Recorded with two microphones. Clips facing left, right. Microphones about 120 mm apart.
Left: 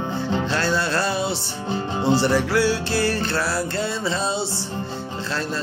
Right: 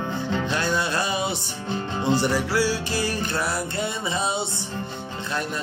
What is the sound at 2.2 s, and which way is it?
Music, 10° right (ahead or behind).